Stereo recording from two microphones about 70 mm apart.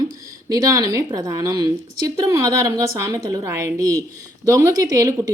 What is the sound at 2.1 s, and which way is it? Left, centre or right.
A woman's voice, right.